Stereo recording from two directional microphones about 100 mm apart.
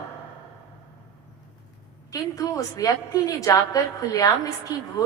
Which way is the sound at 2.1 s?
35° left (ahead or behind).